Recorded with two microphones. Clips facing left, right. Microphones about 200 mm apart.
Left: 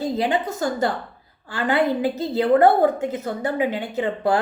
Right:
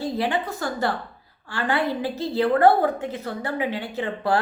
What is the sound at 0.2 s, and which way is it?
A woman's voice, 20° left (ahead or behind).